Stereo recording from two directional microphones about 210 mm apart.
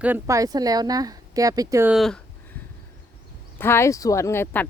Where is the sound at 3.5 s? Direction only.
10° left (ahead or behind).